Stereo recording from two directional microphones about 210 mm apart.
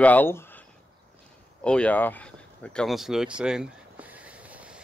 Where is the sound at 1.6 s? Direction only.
5° left (ahead or behind).